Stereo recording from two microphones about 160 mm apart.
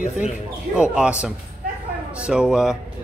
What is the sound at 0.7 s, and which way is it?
A man's voice, 5° right (ahead or behind).